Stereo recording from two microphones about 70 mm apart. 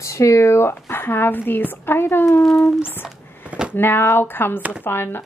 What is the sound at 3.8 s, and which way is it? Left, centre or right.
Speech, left.